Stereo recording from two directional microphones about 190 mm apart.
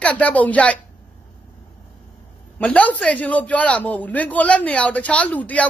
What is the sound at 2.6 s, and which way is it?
Speech, 5° left (ahead or behind).